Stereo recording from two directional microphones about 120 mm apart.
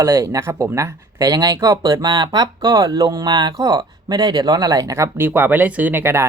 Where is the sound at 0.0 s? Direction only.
25° right (ahead or behind).